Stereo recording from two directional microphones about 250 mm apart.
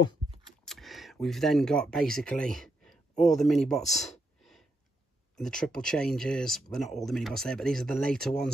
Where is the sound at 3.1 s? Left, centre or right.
Left.